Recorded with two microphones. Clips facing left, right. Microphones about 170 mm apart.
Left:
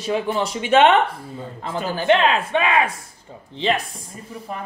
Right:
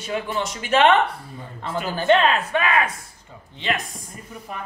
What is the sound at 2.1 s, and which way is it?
Speech, 25° left (ahead or behind).